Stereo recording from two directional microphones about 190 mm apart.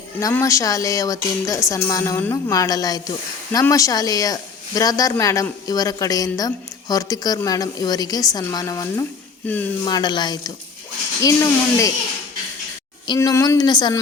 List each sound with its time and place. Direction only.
0.2 s speech: 15° left (ahead or behind)
9.8 s speech: 25° left (ahead or behind)
13.1 s speech: 15° left (ahead or behind)